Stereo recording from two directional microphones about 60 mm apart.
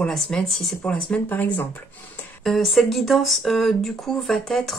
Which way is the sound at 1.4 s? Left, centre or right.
Left.